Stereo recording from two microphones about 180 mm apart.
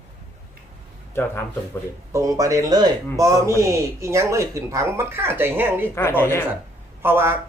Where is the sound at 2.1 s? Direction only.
20° right (ahead or behind).